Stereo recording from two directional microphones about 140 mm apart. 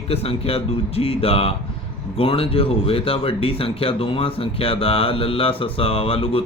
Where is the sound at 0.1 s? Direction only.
45° left (ahead or behind).